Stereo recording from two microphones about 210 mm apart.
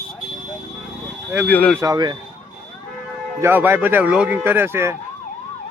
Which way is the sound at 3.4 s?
10° right (ahead or behind).